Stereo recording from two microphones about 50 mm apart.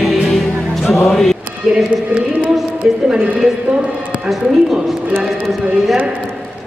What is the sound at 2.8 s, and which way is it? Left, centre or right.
Speech, right.